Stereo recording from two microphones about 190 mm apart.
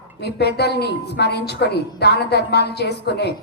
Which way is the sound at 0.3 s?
60° left (ahead or behind).